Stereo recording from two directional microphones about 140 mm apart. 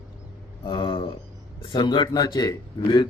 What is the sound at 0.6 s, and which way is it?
Speech, 35° left (ahead or behind).